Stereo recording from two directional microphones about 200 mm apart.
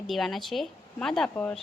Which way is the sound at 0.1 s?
Centre (ahead or behind).